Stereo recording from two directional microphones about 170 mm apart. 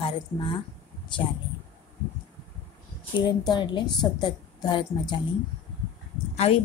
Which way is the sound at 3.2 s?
25° left (ahead or behind).